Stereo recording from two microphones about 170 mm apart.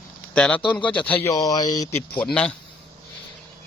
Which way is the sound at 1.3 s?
20° left (ahead or behind).